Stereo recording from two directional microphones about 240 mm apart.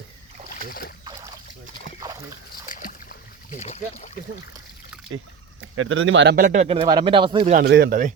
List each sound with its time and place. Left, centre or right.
0.7 s boat: left
2.6 s boat: left
3.6 s speech: left
5.1 s speech: right
6.3 s speech: right
7.5 s speech: right